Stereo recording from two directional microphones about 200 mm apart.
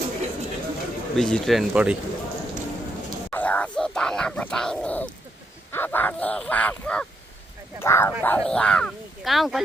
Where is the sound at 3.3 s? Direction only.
10° left (ahead or behind).